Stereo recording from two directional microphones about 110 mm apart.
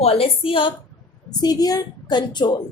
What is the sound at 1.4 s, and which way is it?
Speech, 35° left (ahead or behind).